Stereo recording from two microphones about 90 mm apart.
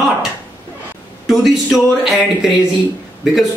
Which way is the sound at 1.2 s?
5° right (ahead or behind).